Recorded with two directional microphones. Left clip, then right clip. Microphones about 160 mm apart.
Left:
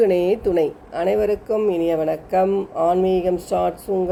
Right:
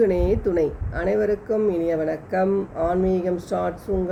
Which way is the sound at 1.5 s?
50° left (ahead or behind).